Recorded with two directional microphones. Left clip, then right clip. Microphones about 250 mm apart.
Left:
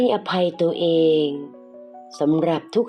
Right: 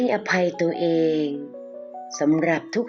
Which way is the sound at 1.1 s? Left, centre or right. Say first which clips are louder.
Left 5 dB; centre.